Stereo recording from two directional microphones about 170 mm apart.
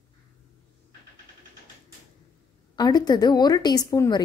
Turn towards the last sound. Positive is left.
turn(degrees=20)  # may be behind; listen again after turning